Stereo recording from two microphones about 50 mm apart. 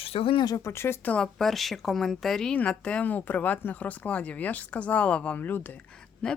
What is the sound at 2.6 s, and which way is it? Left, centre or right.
A woman's voice, left.